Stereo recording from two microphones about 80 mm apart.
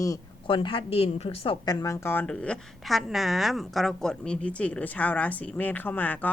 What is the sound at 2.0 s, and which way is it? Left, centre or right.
Speech, left.